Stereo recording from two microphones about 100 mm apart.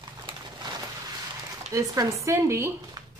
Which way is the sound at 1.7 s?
35° right (ahead or behind).